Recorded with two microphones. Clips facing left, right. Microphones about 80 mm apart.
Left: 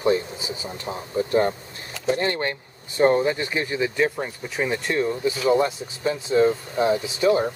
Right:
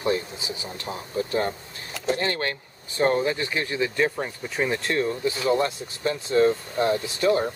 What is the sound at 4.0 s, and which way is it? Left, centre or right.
Speech, centre.